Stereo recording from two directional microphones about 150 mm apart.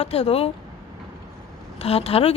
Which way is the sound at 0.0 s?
45° left (ahead or behind).